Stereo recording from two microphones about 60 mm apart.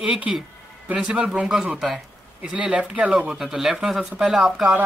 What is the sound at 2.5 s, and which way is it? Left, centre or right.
Speech, centre.